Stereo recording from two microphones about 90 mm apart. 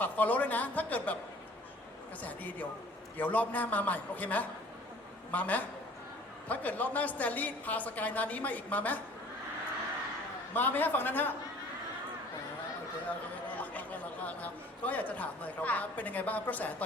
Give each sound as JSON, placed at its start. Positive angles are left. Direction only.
{"t": 0.0, "sound": "speech", "side_deg": 20}
{"t": 2.2, "sound": "a woman's voice", "side_deg": 20}
{"t": 10.5, "sound": "a woman's voice", "side_deg": 20}
{"t": 13.6, "sound": "speech", "side_deg": 15}